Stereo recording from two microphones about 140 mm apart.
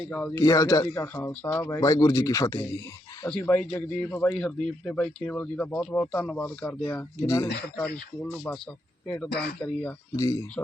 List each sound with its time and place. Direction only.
0.0 s speech: 10° left (ahead or behind)
0.3 s speech: 25° left (ahead or behind)
1.0 s speech: 15° left (ahead or behind)
3.2 s speech: 10° left (ahead or behind)
6.8 s speech: 20° left (ahead or behind)
7.8 s speech: 10° left (ahead or behind)
10.2 s speech: 25° left (ahead or behind)